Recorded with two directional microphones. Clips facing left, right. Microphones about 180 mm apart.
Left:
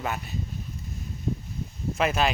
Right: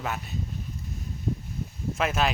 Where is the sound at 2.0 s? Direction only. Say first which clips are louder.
Left 2 dB; centre (ahead or behind).